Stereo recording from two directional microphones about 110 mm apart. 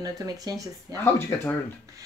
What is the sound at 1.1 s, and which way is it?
Speech, 20° left (ahead or behind).